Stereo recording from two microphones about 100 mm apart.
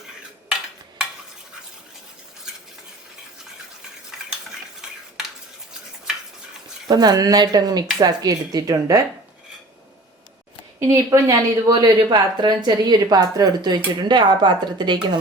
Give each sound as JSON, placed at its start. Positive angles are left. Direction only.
{"t": 0.4, "sound": "a sound", "side_deg": -5}
{"t": 4.1, "sound": "stir", "side_deg": -5}
{"t": 6.8, "sound": "speech", "side_deg": -40}
{"t": 10.8, "sound": "speech", "side_deg": -30}